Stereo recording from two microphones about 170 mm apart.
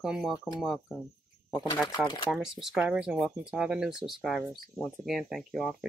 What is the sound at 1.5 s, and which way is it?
Speech, 25° left (ahead or behind).